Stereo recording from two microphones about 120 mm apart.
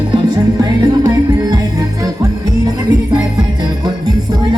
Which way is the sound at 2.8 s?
35° right (ahead or behind).